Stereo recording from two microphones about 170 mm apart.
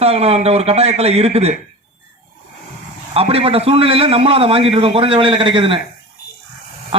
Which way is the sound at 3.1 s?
35° right (ahead or behind).